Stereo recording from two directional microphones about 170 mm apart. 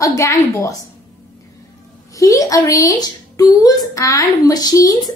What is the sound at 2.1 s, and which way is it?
A woman's voice, 20° left (ahead or behind).